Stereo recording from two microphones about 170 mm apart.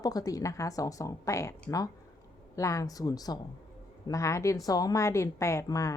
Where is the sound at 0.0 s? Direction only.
20° left (ahead or behind).